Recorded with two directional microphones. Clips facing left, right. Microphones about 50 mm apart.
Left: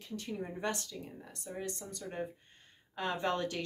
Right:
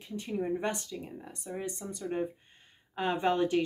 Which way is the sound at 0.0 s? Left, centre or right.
Right.